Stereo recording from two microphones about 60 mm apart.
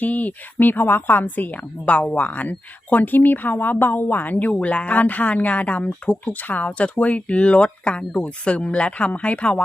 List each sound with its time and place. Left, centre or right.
0.0 s speech: left